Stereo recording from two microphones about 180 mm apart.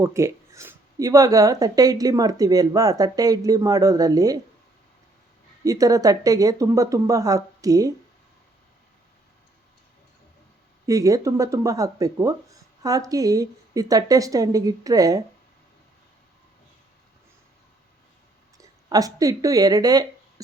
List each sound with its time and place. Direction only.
0.0 s speech: 15° right (ahead or behind)
5.6 s speech: 20° right (ahead or behind)
10.8 s speech: 20° right (ahead or behind)
18.5 s speech: 20° right (ahead or behind)